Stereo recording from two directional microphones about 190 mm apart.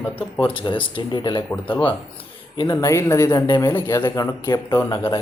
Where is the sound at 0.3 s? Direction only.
30° left (ahead or behind).